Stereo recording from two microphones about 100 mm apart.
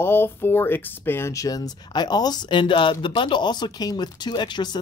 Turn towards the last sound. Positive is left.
turn(degrees=50)  # may be behind; listen again after turning